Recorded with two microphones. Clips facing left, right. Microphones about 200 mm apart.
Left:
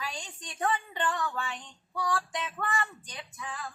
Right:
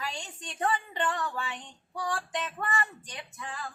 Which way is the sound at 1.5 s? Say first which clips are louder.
Left 1 dB; 25° right (ahead or behind).